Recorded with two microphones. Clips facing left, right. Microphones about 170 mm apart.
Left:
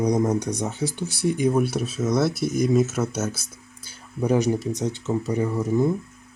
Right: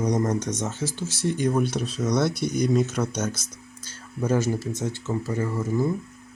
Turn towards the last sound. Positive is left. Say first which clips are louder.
# left 3 dB
turn(degrees=20)  # may be behind; listen again after turning